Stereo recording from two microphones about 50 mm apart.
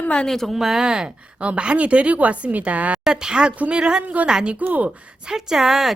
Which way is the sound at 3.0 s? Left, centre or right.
Centre.